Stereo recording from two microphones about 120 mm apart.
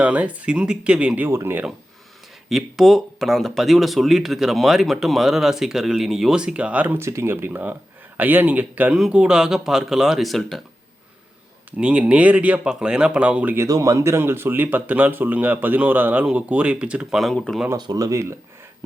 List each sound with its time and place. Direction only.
0.0 s speech: 10° right (ahead or behind)
2.5 s speech: centre (ahead or behind)
11.8 s speech: 10° right (ahead or behind)
13.7 s speech: 25° right (ahead or behind); by 17.6 s 5° left (ahead or behind)
17.7 s speech: 30° right (ahead or behind)